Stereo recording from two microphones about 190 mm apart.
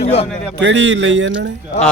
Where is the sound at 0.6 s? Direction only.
75° right (ahead or behind).